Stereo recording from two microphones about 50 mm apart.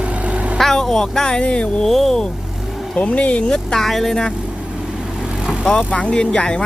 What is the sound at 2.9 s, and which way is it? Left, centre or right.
Speech, left.